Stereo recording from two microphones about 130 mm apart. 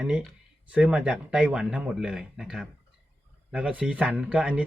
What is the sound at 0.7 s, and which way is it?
Speech, 5° right (ahead or behind).